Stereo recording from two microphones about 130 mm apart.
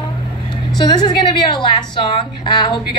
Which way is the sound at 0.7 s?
35° left (ahead or behind).